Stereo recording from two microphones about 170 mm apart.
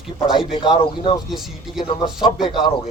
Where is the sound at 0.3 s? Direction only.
25° left (ahead or behind).